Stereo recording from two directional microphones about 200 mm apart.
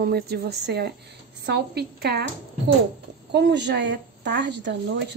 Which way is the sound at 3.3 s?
55° right (ahead or behind).